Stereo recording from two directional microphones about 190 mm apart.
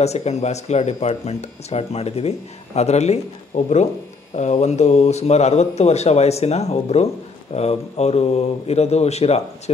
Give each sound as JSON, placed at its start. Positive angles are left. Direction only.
{"t": 0.0, "sound": "speech", "side_deg": 35}